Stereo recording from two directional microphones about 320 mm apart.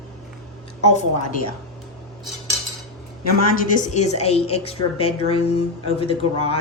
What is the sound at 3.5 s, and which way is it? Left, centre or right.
A woman's voice, left.